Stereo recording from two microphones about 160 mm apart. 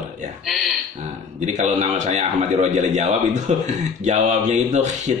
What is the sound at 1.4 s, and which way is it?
Speech, 50° right (ahead or behind).